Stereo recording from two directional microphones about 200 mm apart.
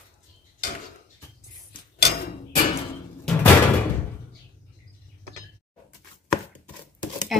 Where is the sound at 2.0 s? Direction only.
50° left (ahead or behind).